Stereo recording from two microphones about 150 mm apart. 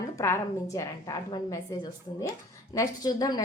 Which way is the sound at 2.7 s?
25° left (ahead or behind).